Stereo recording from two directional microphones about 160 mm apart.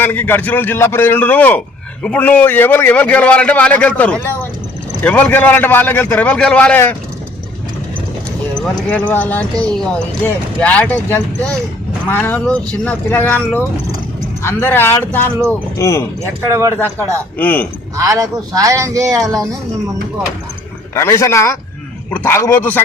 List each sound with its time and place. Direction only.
0.0 s a man's voice: 10° left (ahead or behind)
8.9 s a man's voice: 10° left (ahead or behind)
16.2 s speech: 15° right (ahead or behind)
17.3 s a man's voice: 10° left (ahead or behind)
17.9 s speech: 20° right (ahead or behind)
20.9 s a man's voice: 15° left (ahead or behind)